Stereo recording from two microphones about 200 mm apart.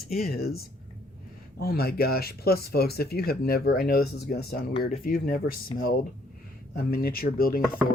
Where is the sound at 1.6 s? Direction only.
50° left (ahead or behind).